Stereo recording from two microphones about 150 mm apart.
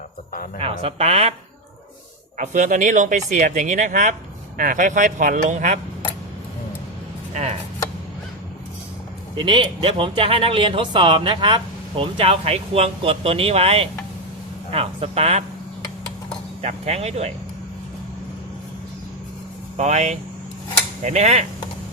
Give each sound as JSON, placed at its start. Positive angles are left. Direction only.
{"t": 0.6, "sound": "speech", "side_deg": -40}
{"t": 2.4, "sound": "speech", "side_deg": -55}
{"t": 7.3, "sound": "speech", "side_deg": -50}
{"t": 9.3, "sound": "speech", "side_deg": -35}
{"t": 16.6, "sound": "speech", "side_deg": -45}
{"t": 19.7, "sound": "speech", "side_deg": -50}